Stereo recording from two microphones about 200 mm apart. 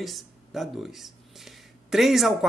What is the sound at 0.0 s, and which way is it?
Speech, centre (ahead or behind).